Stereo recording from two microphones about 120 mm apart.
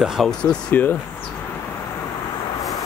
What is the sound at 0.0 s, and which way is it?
Speech, centre (ahead or behind).